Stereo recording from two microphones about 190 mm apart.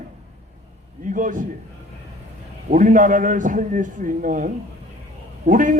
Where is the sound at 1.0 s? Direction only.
45° right (ahead or behind).